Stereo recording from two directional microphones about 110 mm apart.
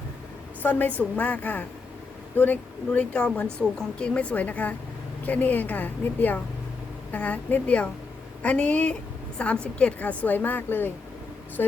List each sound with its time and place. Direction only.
0.6 s speech: 15° left (ahead or behind)